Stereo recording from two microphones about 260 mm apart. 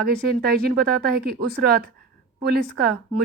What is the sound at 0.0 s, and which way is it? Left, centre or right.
Speech, right.